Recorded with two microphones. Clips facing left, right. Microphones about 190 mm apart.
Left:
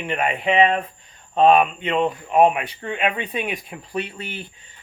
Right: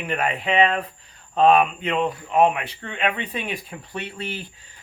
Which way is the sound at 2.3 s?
15° left (ahead or behind).